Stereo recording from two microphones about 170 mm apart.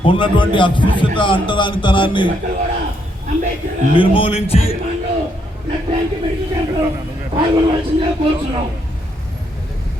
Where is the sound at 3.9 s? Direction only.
30° left (ahead or behind).